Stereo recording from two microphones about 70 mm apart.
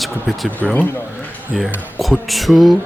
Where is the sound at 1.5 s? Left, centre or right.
Centre.